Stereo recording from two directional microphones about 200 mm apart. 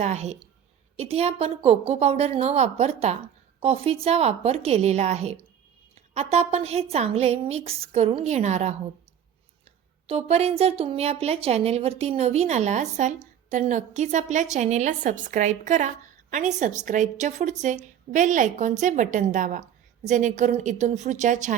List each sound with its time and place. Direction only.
0.0 s speech: 35° right (ahead or behind)
10.1 s speech: 30° right (ahead or behind)